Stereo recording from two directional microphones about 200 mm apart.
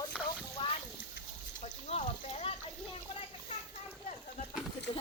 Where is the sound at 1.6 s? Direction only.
35° left (ahead or behind).